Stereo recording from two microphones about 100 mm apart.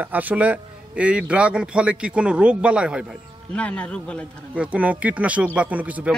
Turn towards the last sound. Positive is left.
turn(degrees=-15)  # may be behind; listen again after turning